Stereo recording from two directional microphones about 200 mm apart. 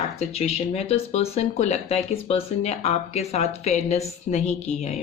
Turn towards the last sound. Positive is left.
turn(degrees=35)  # may be behind; listen again after turning